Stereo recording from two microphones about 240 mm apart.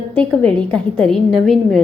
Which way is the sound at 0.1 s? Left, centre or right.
Centre.